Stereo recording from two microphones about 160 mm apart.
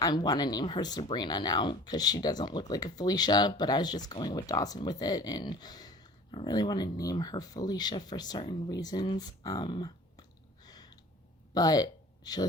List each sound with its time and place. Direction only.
0.0 s speech: 25° left (ahead or behind)